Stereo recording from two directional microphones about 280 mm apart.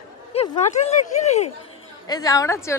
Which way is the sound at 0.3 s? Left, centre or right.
Left.